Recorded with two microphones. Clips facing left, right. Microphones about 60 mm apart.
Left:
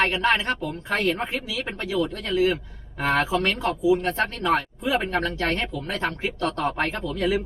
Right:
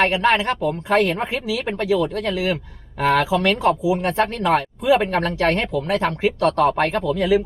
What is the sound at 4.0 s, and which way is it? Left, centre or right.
Speech, right.